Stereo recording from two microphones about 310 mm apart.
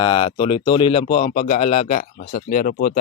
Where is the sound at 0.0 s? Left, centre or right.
Centre.